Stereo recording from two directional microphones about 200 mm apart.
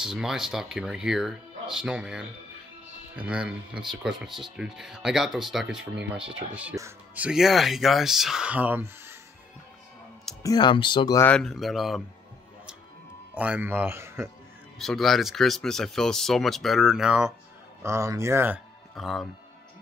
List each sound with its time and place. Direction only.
0.0 s speech: centre (ahead or behind)
10.4 s speech: 20° left (ahead or behind)
11.2 s speech: 5° left (ahead or behind)
13.3 s speech: 5° right (ahead or behind)
14.8 s speech: centre (ahead or behind)
17.8 s speech: 15° right (ahead or behind)
18.9 s speech: centre (ahead or behind)